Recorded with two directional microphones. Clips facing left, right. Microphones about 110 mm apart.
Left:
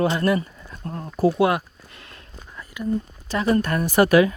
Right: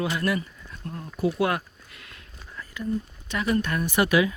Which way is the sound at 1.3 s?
20° left (ahead or behind).